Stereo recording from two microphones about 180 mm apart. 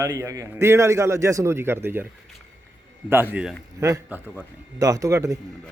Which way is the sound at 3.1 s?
10° right (ahead or behind).